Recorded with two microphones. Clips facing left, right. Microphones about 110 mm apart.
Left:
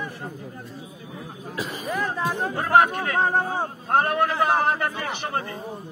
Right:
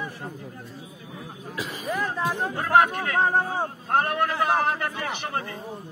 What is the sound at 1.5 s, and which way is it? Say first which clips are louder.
A man's voice: left 1 dB; 30° left (ahead or behind).